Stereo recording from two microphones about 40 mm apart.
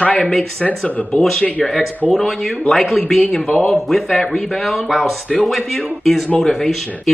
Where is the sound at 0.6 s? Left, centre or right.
Left.